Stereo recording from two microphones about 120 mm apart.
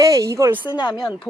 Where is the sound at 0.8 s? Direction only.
40° left (ahead or behind).